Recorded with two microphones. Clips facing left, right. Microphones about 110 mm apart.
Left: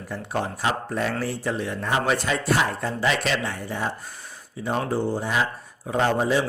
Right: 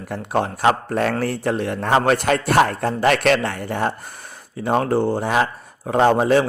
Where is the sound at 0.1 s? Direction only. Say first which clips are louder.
Right 6 dB; 60° right (ahead or behind).